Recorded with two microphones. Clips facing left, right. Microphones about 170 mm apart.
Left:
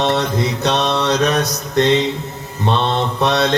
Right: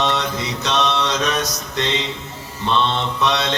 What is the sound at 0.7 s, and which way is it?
Mantra, 35° left (ahead or behind).